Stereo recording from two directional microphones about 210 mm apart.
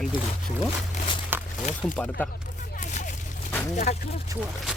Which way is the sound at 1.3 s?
10° right (ahead or behind).